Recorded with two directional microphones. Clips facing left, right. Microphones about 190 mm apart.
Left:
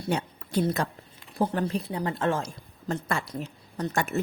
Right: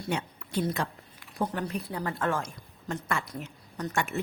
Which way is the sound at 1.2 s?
30° left (ahead or behind).